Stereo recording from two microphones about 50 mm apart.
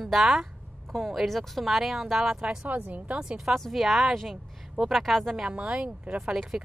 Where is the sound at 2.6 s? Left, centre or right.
Right.